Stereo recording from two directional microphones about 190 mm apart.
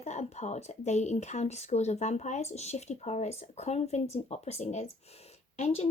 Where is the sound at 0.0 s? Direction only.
35° left (ahead or behind).